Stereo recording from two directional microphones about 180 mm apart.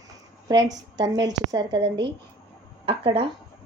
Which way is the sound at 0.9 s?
20° right (ahead or behind).